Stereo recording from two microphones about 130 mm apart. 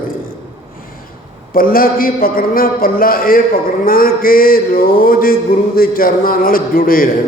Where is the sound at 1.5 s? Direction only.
90° left.